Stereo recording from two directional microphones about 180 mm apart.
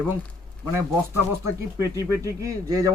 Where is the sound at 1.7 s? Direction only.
15° right (ahead or behind).